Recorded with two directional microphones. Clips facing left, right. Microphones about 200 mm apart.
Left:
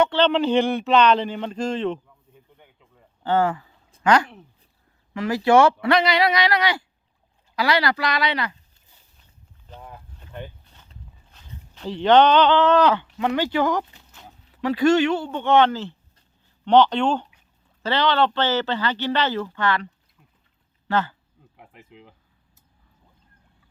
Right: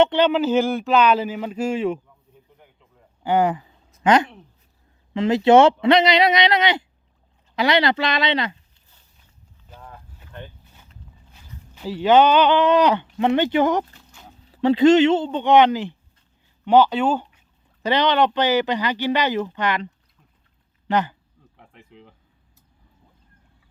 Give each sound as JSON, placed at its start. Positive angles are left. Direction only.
{"t": 0.0, "sound": "speech", "side_deg": -15}
{"t": 0.3, "sound": "speech", "side_deg": -5}
{"t": 3.2, "sound": "speech", "side_deg": -15}
{"t": 11.7, "sound": "speech", "side_deg": -5}
{"t": 17.8, "sound": "speech", "side_deg": -15}
{"t": 21.5, "sound": "insect", "side_deg": 5}